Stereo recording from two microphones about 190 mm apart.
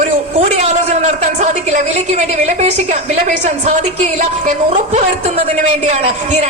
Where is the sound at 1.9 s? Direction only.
35° right (ahead or behind).